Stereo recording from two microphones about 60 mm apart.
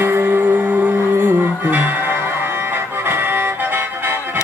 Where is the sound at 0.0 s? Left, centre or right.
Right.